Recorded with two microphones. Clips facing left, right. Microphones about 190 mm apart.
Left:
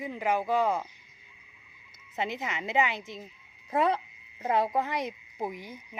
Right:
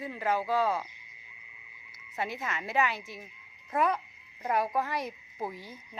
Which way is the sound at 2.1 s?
20° left (ahead or behind).